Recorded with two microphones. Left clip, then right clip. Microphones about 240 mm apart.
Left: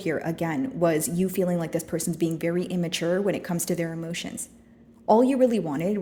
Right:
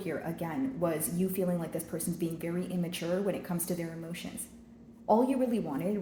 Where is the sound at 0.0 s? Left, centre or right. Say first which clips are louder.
Left 8 dB; left.